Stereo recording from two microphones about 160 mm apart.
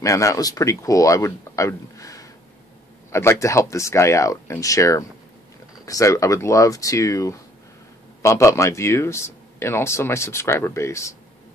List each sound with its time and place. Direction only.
0.0 s speech: 20° left (ahead or behind)